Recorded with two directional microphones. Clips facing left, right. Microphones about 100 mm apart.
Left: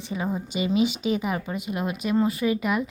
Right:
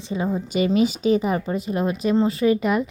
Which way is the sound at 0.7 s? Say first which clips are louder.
Right 3 dB; 40° right (ahead or behind).